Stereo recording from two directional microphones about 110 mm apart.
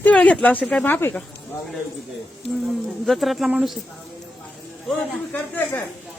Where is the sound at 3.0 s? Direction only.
Centre (ahead or behind).